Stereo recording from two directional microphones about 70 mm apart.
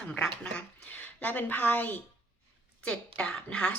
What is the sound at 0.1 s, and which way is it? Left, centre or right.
A woman's voice, centre.